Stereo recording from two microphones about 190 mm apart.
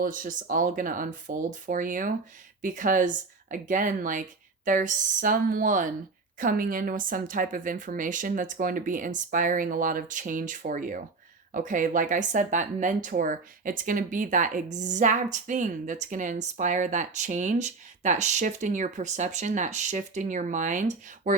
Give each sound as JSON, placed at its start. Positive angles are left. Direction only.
{"t": 0.0, "sound": "speech", "side_deg": -45}